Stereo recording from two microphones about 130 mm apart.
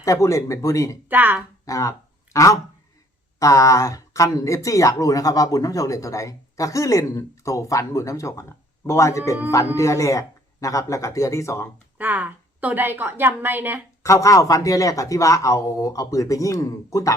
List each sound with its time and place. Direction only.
0.0 s speech: 25° left (ahead or behind)
1.0 s a woman's voice: 15° right (ahead or behind)
1.6 s a sound: 25° left (ahead or behind)
3.3 s speech: 25° left (ahead or behind)
11.9 s a woman's voice: 15° right (ahead or behind)
14.0 s speech: 25° left (ahead or behind)